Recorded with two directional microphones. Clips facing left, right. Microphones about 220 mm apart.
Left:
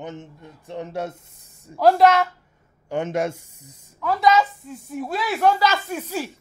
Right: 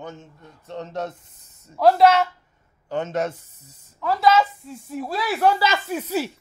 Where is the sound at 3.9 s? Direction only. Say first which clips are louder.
Even; centre (ahead or behind).